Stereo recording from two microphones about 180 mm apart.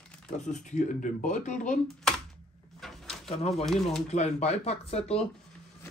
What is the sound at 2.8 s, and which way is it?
Drawer open or close, centre (ahead or behind).